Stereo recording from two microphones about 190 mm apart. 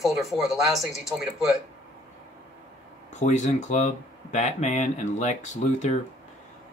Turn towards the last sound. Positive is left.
turn(degrees=40)  # may be behind; listen again after turning